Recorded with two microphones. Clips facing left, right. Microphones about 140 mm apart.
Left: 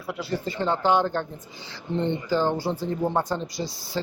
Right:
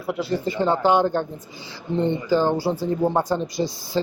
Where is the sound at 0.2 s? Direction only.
15° right (ahead or behind).